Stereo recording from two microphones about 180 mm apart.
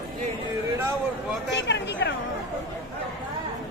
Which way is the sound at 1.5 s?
75° left (ahead or behind).